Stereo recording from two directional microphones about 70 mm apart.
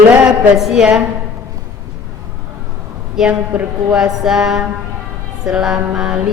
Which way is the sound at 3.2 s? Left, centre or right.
Centre.